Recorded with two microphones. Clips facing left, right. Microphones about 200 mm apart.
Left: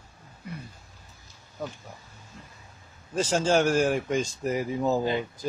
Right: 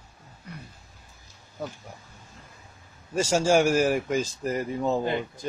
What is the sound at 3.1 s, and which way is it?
Speech, 10° right (ahead or behind).